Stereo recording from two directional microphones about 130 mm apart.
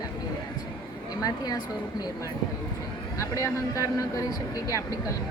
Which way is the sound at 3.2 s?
25° left (ahead or behind).